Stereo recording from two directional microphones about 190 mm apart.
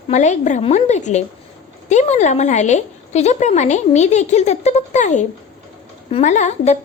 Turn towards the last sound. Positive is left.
turn(degrees=40)  # may be behind; listen again after turning